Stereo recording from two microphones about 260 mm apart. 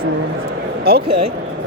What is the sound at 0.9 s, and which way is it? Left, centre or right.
Speech, right.